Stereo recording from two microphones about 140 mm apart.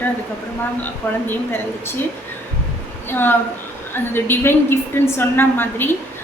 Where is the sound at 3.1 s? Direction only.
15° left (ahead or behind).